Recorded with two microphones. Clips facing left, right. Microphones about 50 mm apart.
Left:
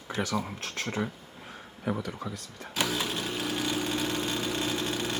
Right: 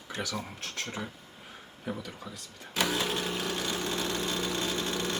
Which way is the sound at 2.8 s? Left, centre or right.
Centre.